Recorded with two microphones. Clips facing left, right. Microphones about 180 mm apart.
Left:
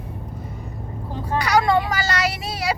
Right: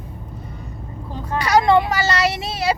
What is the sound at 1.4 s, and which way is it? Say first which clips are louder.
Speech: right 4 dB; 25° right (ahead or behind).